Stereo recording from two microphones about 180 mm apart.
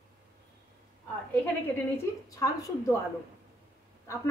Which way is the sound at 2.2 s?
20° left (ahead or behind).